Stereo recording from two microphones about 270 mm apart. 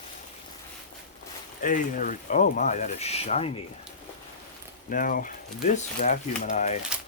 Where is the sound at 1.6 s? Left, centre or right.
Left.